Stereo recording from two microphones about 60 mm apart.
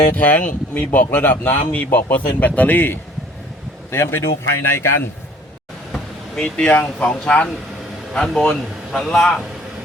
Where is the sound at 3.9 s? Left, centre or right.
Left.